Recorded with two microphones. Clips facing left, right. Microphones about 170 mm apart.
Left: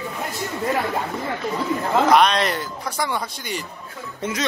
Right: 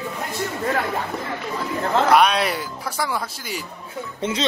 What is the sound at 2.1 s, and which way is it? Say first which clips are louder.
Speech: right 1 dB; 5° right (ahead or behind).